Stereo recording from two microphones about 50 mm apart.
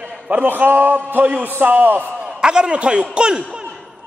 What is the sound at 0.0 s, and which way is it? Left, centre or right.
A man's voice, right.